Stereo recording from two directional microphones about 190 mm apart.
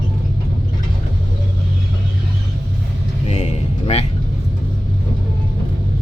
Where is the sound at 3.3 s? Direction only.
35° left (ahead or behind).